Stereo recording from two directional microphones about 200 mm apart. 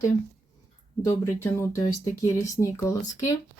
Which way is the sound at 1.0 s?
15° left (ahead or behind).